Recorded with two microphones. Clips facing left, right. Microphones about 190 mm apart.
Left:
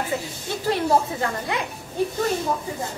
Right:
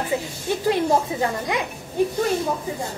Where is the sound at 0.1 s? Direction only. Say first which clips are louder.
Right 4 dB; 15° right (ahead or behind).